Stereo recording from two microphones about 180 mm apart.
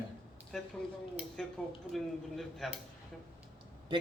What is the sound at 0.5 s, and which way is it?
A man's voice, centre (ahead or behind).